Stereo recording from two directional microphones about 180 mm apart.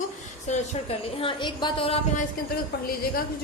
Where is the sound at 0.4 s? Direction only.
40° left (ahead or behind).